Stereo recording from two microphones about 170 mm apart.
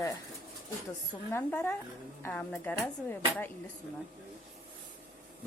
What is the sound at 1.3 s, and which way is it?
Speech, 10° left (ahead or behind).